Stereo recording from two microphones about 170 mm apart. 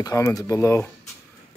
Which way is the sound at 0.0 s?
20° left (ahead or behind).